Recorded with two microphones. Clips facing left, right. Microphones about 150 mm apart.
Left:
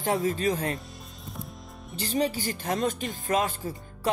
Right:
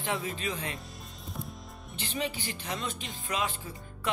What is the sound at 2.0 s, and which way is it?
Speech, 40° left (ahead or behind).